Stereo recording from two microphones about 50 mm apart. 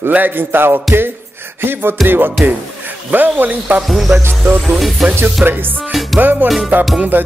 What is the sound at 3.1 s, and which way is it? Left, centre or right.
Speech, right.